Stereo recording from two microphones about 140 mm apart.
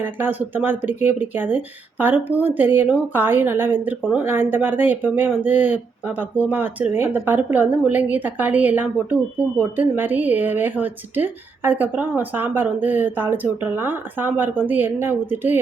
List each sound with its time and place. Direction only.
0.0 s speech: 15° right (ahead or behind)